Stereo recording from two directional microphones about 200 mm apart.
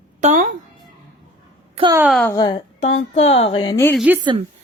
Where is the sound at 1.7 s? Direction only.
25° right (ahead or behind).